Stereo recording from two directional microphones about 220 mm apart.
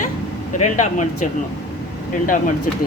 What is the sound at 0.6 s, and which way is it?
Speech, 35° left (ahead or behind).